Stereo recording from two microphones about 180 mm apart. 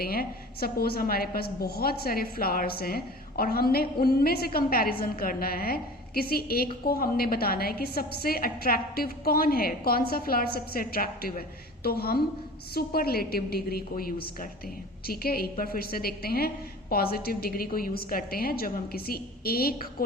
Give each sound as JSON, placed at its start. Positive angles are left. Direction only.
{"t": 0.0, "sound": "a woman's voice", "side_deg": 55}